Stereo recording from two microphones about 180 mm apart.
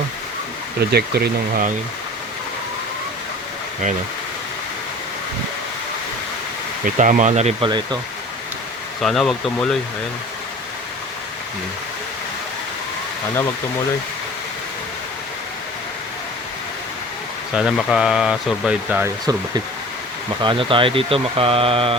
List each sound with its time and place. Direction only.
0.8 s speech: 65° right (ahead or behind)
6.8 s speech: 45° right (ahead or behind)
9.0 s speech: centre (ahead or behind)
17.5 s speech: 5° right (ahead or behind)
19.2 s speech: 20° right (ahead or behind)